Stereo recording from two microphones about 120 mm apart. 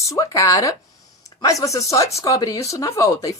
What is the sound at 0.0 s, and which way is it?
Speech, 25° left (ahead or behind).